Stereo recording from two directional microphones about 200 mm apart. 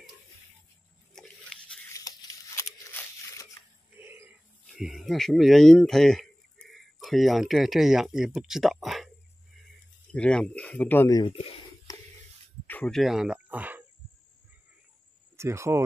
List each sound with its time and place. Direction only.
1.1 s crunch: centre (ahead or behind)
2.0 s tearing: 15° left (ahead or behind)
4.0 s a sound: 10° right (ahead or behind)
4.6 s speech: centre (ahead or behind)
10.1 s speech: 5° left (ahead or behind); by 11.5 s 30° left (ahead or behind)
11.9 s a sound: 15° left (ahead or behind); by 13.8 s 10° right (ahead or behind)
15.3 s speech: 15° right (ahead or behind)